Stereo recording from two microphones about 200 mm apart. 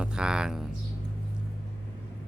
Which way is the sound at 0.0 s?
5° right (ahead or behind).